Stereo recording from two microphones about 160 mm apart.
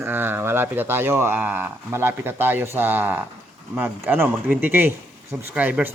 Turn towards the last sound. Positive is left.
turn(degrees=-10)  # may be behind; listen again after turning